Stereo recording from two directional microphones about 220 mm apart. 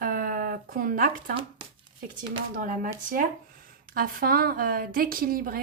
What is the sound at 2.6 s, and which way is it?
Speech, 40° right (ahead or behind).